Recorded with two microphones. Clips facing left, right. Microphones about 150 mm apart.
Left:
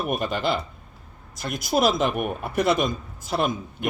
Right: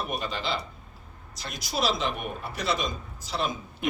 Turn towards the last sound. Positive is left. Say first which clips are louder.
# left 2 dB
turn(degrees=0)  # may be behind; listen again after turning